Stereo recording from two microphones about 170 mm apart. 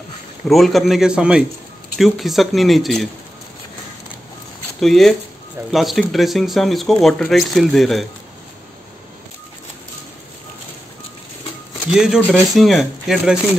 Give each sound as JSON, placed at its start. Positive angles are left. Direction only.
{"t": 0.5, "sound": "speech", "side_deg": 0}
{"t": 4.7, "sound": "speech", "side_deg": 0}
{"t": 11.9, "sound": "speech", "side_deg": -5}
{"t": 12.2, "sound": "speech", "side_deg": 10}